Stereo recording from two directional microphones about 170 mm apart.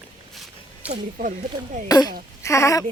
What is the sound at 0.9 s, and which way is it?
Speech, 50° right (ahead or behind).